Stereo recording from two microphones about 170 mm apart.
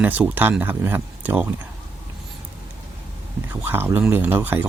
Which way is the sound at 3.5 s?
10° right (ahead or behind).